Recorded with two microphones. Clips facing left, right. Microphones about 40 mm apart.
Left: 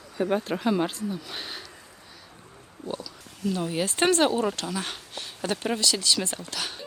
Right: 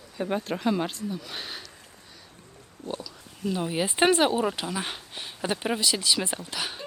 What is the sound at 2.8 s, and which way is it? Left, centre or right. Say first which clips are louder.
Speech: left 1 dB; right.